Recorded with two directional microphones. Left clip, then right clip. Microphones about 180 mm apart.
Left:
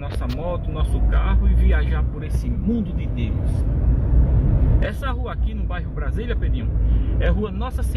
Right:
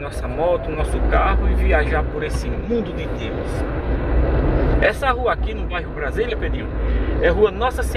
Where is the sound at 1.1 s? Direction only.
15° left (ahead or behind).